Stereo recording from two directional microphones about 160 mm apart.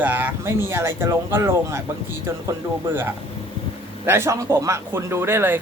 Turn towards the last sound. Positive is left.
turn(degrees=-15)  # may be behind; listen again after turning